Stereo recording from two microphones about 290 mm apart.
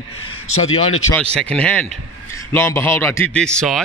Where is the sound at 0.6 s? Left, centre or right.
Left.